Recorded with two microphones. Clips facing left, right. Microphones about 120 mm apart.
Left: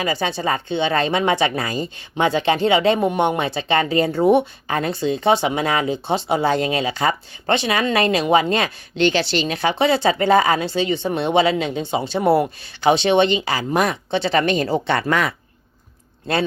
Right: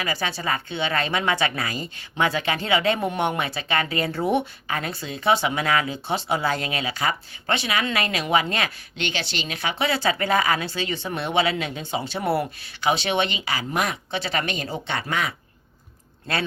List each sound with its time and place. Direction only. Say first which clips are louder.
0.0 s a woman's voice: left 6 dB; 25° left (ahead or behind); by 15.4 s 50° left (ahead or behind)